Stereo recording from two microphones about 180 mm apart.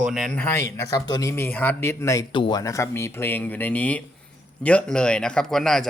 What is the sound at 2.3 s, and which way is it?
A man's voice, 25° left (ahead or behind).